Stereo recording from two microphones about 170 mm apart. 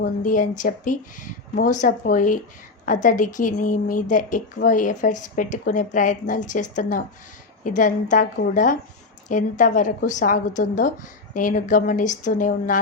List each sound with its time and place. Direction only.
0.0 s a woman's voice: 50° left (ahead or behind)